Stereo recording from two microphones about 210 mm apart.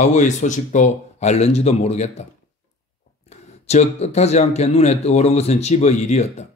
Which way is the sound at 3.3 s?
30° left (ahead or behind).